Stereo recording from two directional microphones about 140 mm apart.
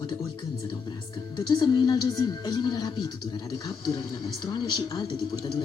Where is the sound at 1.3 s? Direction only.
30° left (ahead or behind).